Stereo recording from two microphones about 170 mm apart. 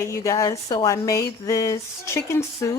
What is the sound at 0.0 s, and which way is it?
Speech, 15° left (ahead or behind).